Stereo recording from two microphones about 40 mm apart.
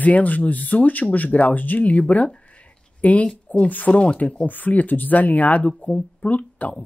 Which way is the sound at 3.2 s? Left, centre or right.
Left.